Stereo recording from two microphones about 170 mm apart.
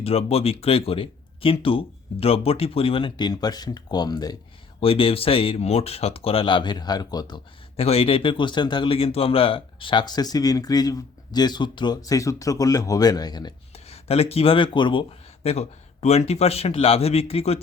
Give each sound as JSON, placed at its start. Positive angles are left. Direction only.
{"t": 0.0, "sound": "speech", "side_deg": 35}
{"t": 13.7, "sound": "speech", "side_deg": 35}
{"t": 15.4, "sound": "speech", "side_deg": 40}